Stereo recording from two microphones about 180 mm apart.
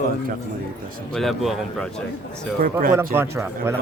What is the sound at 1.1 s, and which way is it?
Speech, centre (ahead or behind).